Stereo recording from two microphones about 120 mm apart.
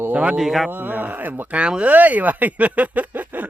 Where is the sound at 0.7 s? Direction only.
15° right (ahead or behind).